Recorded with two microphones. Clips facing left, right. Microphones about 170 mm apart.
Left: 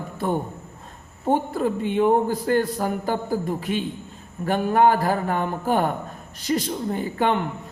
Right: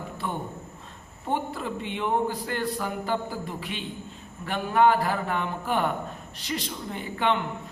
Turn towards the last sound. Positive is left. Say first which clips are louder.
# left 4 dB
turn(degrees=45)  # may be behind; listen again after turning